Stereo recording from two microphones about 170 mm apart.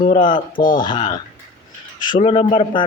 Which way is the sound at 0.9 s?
30° left (ahead or behind).